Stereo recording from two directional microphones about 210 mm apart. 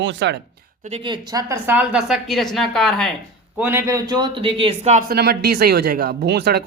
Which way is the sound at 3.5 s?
10° right (ahead or behind).